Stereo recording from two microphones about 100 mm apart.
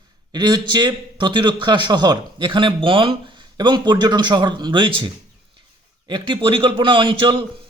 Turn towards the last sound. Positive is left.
turn(degrees=-55)  # may be behind; listen again after turning